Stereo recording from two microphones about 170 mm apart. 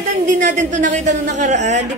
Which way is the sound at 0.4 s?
50° right (ahead or behind).